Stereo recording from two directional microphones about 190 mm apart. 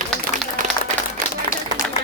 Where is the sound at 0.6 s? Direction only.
45° right (ahead or behind).